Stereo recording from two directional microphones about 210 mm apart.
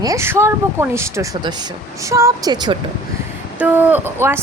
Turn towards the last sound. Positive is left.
turn(degrees=-10)  # may be behind; listen again after turning